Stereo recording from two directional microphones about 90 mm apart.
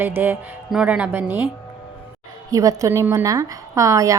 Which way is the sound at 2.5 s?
40° right (ahead or behind).